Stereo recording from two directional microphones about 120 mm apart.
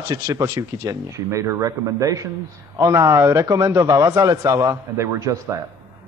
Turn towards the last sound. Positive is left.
turn(degrees=-30)  # may be behind; listen again after turning